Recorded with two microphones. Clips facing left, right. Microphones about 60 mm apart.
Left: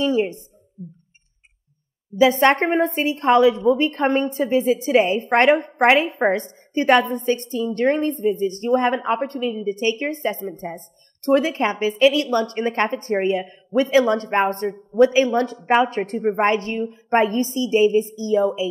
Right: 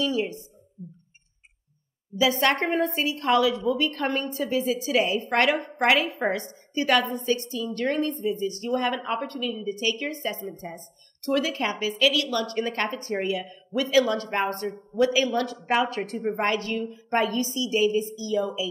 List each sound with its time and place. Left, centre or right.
0.0 s a woman's voice: left
2.1 s a woman's voice: left